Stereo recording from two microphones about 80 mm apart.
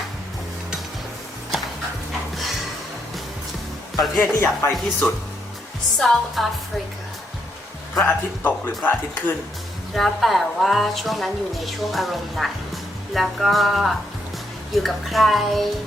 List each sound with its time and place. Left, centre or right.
2.3 s music: centre
4.2 s speech: left
6.0 s speech: centre
8.0 s speech: left
9.9 s speech: centre